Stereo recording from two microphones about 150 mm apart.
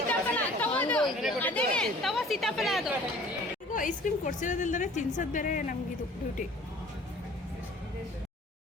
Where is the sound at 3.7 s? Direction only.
60° left (ahead or behind).